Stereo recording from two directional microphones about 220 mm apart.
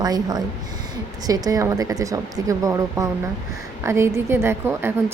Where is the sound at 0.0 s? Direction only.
15° right (ahead or behind).